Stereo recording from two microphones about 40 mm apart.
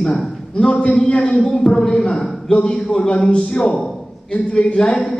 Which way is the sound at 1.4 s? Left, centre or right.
Centre.